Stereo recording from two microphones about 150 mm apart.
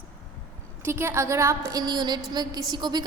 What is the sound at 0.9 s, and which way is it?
A woman's voice, 15° right (ahead or behind).